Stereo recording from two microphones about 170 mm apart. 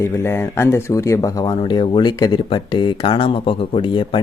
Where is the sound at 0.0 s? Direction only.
15° left (ahead or behind).